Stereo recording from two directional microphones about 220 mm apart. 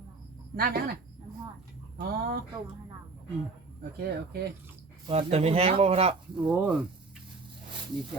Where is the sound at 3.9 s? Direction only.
45° right (ahead or behind).